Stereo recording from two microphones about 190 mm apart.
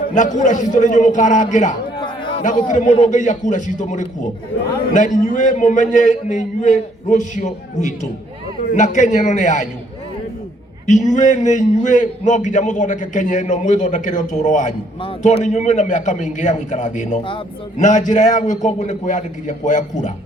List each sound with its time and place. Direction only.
0.1 s a man's voice: 40° left (ahead or behind)
2.0 s a sound: 25° left (ahead or behind)
2.4 s a man's voice: 40° left (ahead or behind)
10.8 s a man's voice: 40° left (ahead or behind)